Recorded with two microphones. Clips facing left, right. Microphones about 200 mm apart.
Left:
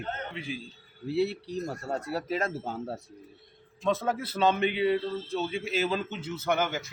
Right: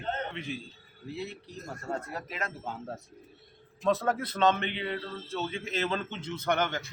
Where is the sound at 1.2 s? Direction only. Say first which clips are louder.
Left 8 dB; 35° left (ahead or behind).